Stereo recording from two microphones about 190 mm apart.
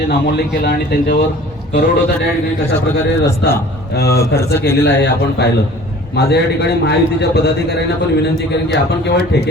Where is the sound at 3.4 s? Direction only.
65° left (ahead or behind).